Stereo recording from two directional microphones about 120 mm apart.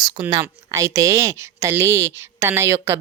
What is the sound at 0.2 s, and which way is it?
Speech, 25° right (ahead or behind).